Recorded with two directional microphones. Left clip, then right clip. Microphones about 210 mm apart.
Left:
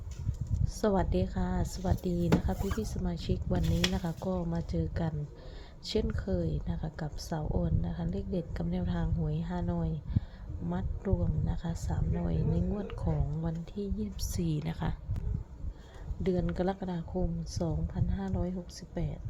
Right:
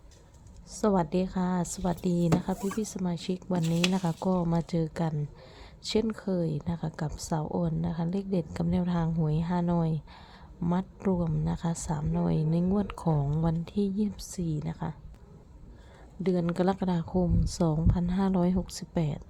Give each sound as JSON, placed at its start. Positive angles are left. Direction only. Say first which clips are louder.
{"t": 0.7, "sound": "a woman's voice", "louder": "right 3 dB", "side_deg": -10}
{"t": 14.2, "sound": "a woman's voice", "louder": "even", "side_deg": -10}
{"t": 16.2, "sound": "speech", "louder": "right 4 dB", "side_deg": -15}